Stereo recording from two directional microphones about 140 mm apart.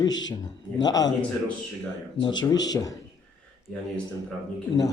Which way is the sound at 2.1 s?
35° left (ahead or behind).